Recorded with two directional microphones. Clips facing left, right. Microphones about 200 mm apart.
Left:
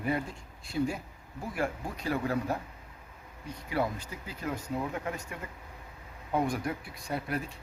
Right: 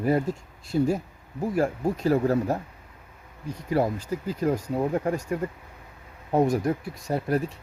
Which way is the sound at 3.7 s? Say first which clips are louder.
Right 7 dB; 40° right (ahead or behind).